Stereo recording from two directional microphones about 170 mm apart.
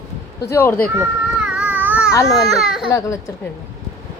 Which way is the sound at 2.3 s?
Centre (ahead or behind).